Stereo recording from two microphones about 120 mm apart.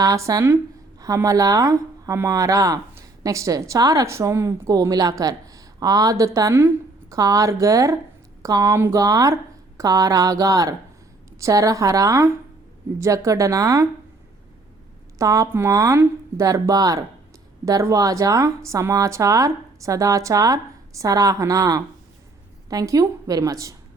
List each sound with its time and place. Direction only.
0.0 s speech: 30° right (ahead or behind)
15.2 s speech: 25° right (ahead or behind)